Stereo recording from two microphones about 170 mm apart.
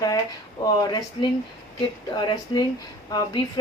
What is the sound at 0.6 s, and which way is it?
A woman's voice, 25° left (ahead or behind).